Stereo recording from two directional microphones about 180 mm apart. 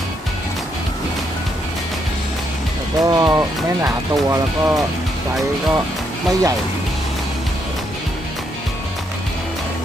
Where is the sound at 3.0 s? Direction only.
20° right (ahead or behind).